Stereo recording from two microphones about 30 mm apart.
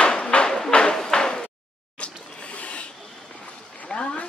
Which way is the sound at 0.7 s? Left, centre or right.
Left.